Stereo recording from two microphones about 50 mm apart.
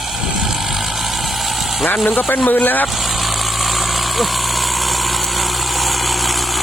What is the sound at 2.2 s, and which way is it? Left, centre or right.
Speech, left.